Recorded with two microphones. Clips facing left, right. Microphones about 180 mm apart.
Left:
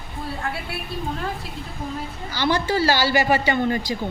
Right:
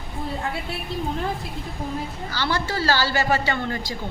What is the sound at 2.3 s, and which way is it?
A man's voice, 15° left (ahead or behind).